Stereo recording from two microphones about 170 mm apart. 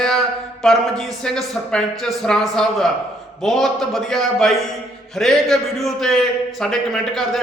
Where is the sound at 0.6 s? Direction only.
Centre (ahead or behind).